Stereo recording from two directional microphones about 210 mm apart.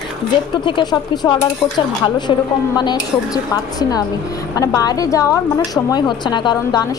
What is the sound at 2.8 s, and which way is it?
Speech, 20° left (ahead or behind).